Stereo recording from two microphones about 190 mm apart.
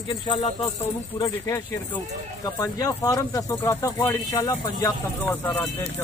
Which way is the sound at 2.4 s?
20° left (ahead or behind).